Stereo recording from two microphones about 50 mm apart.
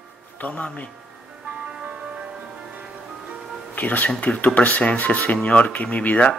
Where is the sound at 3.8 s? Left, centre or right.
Left.